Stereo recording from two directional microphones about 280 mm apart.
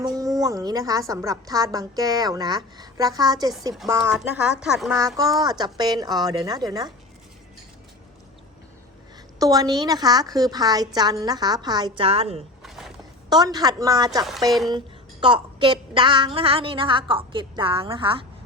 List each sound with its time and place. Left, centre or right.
0.0 s a woman's voice: centre
9.4 s a woman's voice: centre
12.6 s a sound: centre
13.3 s a woman's voice: centre